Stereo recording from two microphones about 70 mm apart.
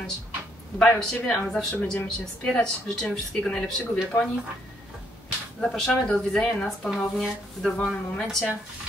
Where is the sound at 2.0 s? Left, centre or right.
Centre.